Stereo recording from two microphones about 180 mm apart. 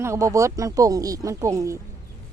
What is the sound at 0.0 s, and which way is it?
Speech, 15° right (ahead or behind).